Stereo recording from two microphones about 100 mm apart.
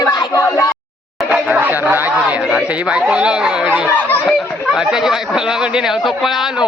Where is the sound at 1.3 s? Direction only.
15° right (ahead or behind).